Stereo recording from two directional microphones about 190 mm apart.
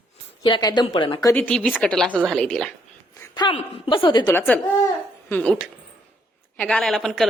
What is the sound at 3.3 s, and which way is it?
A woman's voice, 25° left (ahead or behind).